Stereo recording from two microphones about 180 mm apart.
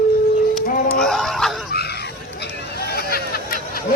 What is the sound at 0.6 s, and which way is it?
Speech, 50° left (ahead or behind).